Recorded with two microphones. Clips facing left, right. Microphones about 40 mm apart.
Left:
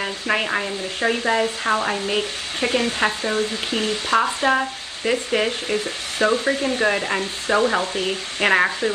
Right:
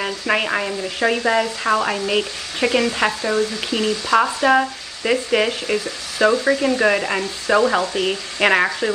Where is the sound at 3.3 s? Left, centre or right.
Left.